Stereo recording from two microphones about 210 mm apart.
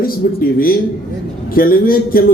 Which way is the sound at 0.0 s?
45° left (ahead or behind).